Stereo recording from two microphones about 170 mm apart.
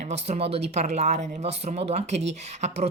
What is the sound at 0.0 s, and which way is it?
Speech, 40° right (ahead or behind).